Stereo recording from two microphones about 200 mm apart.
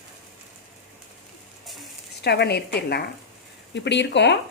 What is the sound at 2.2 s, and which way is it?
Speech, 55° left (ahead or behind).